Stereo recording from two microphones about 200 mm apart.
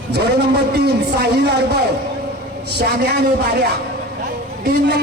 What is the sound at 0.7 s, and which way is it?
A man's voice, 55° right (ahead or behind).